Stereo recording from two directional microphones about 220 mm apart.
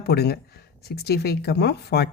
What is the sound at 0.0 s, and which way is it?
Speech, 45° left (ahead or behind).